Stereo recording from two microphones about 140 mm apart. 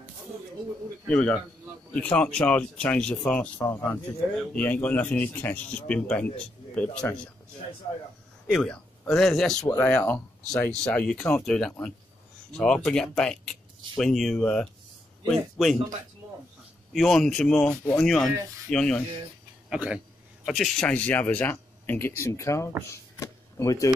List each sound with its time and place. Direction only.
1.0 s speech: 10° left (ahead or behind)
8.5 s speech: 5° left (ahead or behind)
16.9 s speech: centre (ahead or behind)
19.7 s speech: 5° right (ahead or behind); by 22.7 s 20° left (ahead or behind)
23.1 s a sound: 25° left (ahead or behind)